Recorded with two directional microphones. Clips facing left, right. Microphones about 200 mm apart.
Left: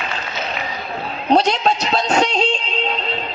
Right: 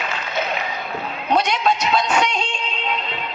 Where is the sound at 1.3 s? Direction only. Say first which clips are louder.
Left 3 dB; 30° left (ahead or behind).